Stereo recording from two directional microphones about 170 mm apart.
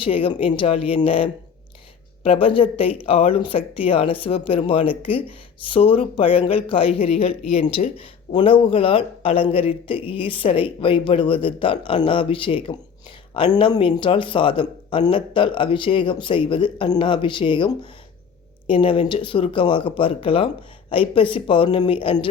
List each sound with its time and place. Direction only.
0.0 s speech: 30° left (ahead or behind)
18.7 s speech: 30° left (ahead or behind)